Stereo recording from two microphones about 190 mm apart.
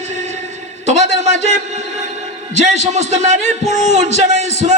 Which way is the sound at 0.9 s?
35° right (ahead or behind).